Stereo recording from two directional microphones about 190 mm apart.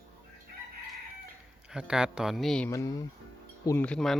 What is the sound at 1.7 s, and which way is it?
Speech, 5° right (ahead or behind).